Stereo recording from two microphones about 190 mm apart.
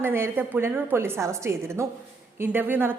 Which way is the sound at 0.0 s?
10° right (ahead or behind).